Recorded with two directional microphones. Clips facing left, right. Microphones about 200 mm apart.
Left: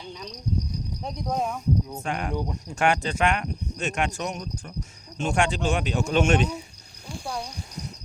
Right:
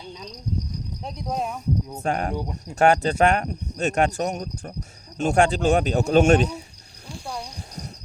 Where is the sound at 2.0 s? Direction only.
40° right (ahead or behind).